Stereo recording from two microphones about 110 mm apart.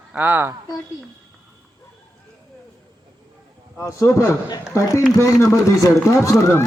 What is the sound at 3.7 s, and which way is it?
A man's voice, 25° left (ahead or behind).